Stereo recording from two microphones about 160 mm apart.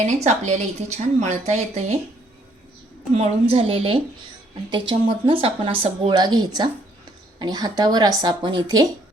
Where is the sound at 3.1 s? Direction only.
40° right (ahead or behind).